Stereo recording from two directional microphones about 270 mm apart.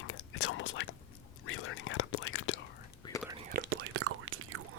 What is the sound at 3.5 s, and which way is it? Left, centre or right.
Whispering, right.